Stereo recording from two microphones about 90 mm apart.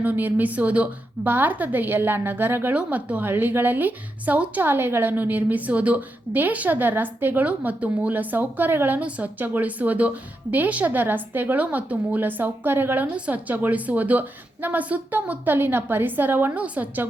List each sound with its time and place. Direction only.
0.0 s a woman's voice: 20° right (ahead or behind)